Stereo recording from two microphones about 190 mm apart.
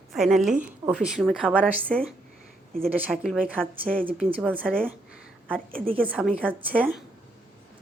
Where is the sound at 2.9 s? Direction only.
10° right (ahead or behind).